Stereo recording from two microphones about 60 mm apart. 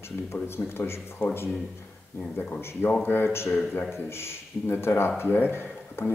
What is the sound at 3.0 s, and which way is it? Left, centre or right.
Speech, left.